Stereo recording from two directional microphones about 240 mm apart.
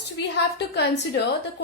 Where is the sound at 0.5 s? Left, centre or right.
Left.